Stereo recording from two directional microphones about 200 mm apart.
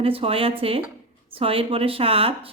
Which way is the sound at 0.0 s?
30° right (ahead or behind).